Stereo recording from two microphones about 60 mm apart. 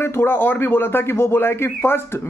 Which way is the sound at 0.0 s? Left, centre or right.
Left.